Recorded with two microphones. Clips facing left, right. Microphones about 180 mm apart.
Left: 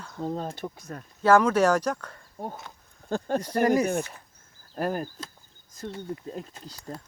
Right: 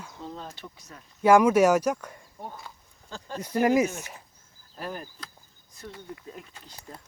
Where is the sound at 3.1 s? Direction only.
55° left (ahead or behind).